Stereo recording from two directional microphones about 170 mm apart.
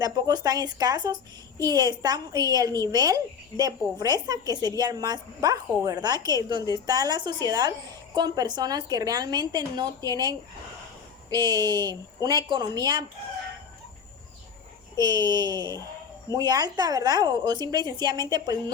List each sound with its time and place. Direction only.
0.0 s a woman's voice: 20° right (ahead or behind)
14.9 s a woman's voice: 25° right (ahead or behind)